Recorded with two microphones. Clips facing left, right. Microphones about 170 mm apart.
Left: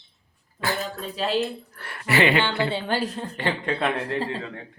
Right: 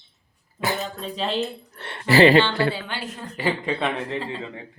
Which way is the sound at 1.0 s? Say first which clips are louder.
Left 1 dB; 5° left (ahead or behind).